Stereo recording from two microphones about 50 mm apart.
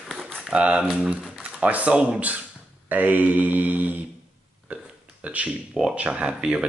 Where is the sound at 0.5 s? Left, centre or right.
Right.